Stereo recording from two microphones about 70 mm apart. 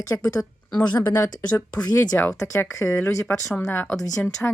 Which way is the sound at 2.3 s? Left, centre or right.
Left.